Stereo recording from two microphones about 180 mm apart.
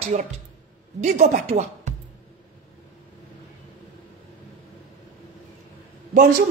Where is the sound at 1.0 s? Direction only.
40° right (ahead or behind).